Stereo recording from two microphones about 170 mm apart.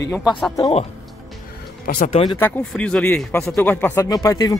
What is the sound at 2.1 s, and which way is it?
Speech, 30° left (ahead or behind).